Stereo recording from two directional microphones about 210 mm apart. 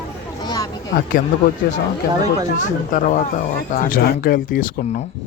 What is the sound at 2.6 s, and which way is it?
Speech, 35° left (ahead or behind).